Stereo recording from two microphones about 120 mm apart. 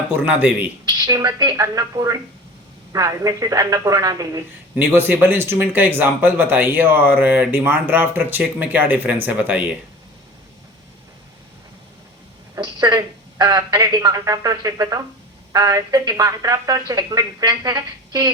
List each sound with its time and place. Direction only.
0.2 s speech: 15° right (ahead or behind)
0.9 s a woman's voice: 30° right (ahead or behind)
4.7 s speech: 20° right (ahead or behind)
12.5 s speech: 35° right (ahead or behind)